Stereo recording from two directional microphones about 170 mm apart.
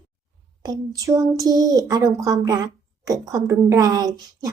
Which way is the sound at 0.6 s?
20° right (ahead or behind).